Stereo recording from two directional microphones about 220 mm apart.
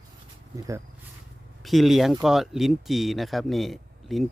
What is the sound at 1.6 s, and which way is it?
Speech, centre (ahead or behind).